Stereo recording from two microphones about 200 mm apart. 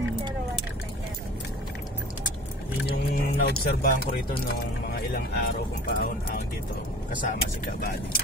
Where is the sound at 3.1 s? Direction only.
50° left (ahead or behind).